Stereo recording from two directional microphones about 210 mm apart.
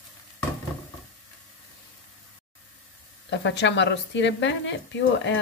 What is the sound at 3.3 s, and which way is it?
A woman's voice, 60° left (ahead or behind).